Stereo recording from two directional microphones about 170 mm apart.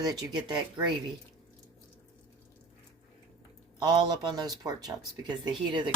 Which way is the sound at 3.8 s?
25° right (ahead or behind).